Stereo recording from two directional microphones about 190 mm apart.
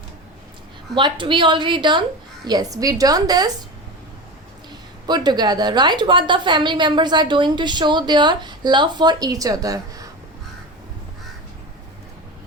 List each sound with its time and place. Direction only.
0.9 s a woman's voice: 25° right (ahead or behind)
5.0 s a woman's voice: 20° right (ahead or behind)